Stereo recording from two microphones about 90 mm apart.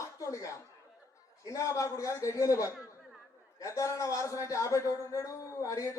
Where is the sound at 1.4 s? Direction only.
40° left (ahead or behind).